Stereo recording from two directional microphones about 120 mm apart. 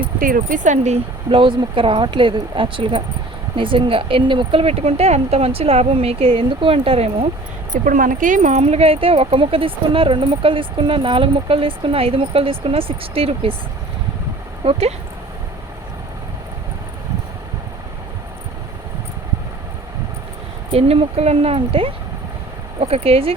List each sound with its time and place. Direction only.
0.5 s speech: 90° right
1.3 s speech: 45° right (ahead or behind)
7.7 s speech: 90° right; by 13.6 s 50° right (ahead or behind)
14.6 s speech: 55° right (ahead or behind)
20.7 s speech: 55° right (ahead or behind)